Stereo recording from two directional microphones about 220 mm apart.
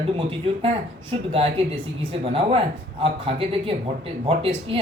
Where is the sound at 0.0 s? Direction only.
25° right (ahead or behind).